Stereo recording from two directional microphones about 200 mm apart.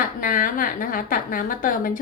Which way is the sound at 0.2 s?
45° left (ahead or behind).